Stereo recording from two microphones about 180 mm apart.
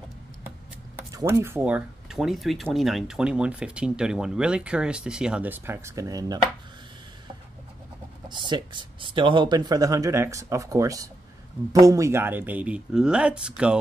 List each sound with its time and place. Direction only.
0.9 s speech: 15° right (ahead or behind)
8.3 s speech: 25° right (ahead or behind); by 13.7 s 5° right (ahead or behind)